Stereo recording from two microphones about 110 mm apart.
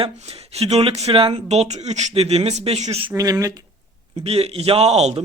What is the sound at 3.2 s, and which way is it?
Speech, 30° right (ahead or behind).